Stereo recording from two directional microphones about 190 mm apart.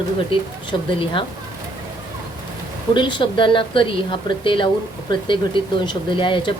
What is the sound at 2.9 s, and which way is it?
Speech, 25° left (ahead or behind).